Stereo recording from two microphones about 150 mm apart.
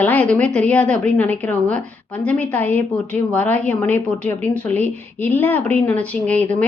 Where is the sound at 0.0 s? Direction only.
10° left (ahead or behind).